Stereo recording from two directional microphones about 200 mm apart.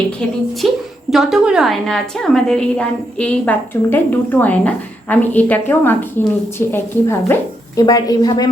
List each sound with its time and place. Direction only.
0.6 s a woman's voice: centre (ahead or behind); by 8.4 s 20° left (ahead or behind)